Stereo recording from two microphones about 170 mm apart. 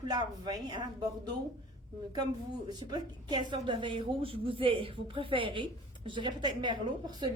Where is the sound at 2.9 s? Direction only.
25° right (ahead or behind).